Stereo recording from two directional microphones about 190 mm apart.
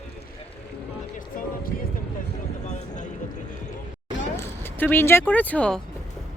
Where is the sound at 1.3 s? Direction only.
45° left (ahead or behind).